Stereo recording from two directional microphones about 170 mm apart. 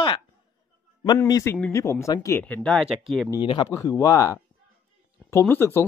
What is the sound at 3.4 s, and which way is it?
Speech, 30° left (ahead or behind).